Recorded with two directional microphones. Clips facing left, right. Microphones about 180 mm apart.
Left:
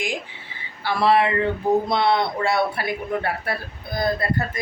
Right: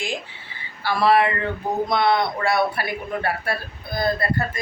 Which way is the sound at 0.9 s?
25° left (ahead or behind).